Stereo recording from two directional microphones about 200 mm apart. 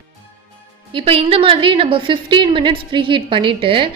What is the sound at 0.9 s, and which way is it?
A woman's voice, 30° right (ahead or behind).